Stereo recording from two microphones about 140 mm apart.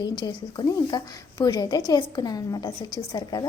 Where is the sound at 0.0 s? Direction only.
30° left (ahead or behind).